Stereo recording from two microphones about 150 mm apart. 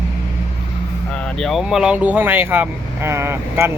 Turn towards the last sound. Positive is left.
turn(degrees=-15)  # may be behind; listen again after turning